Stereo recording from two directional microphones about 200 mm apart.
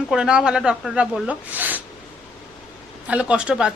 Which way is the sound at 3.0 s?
5° right (ahead or behind).